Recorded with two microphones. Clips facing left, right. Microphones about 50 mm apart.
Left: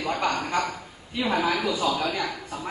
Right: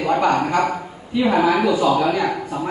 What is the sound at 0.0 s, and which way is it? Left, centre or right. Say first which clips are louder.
A man's voice: right 9 dB; right.